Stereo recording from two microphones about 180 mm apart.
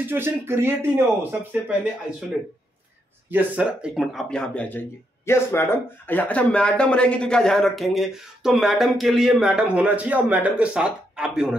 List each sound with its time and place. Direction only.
0.1 s speech: 10° right (ahead or behind)
3.3 s speech: 10° right (ahead or behind)